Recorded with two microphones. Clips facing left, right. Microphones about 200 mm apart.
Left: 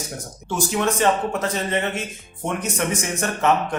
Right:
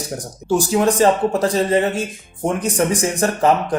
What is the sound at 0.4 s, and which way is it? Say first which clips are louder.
Speech: right 6 dB; 35° right (ahead or behind).